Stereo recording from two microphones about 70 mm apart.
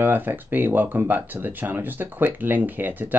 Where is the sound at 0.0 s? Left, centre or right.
Right.